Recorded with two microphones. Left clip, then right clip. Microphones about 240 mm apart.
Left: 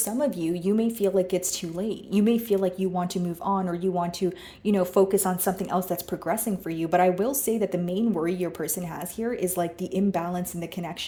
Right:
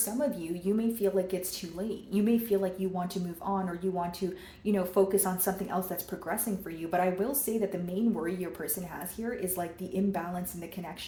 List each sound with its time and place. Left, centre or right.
0.2 s speech: left